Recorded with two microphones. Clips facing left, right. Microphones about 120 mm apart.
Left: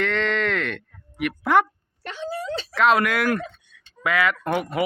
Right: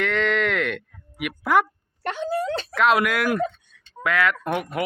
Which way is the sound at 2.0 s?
60° right (ahead or behind).